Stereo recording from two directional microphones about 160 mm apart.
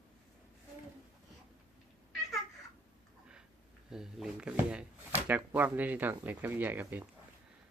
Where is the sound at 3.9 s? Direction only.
5° right (ahead or behind).